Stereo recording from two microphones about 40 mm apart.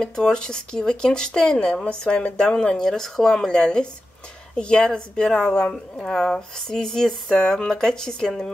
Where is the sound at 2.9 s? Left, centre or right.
Centre.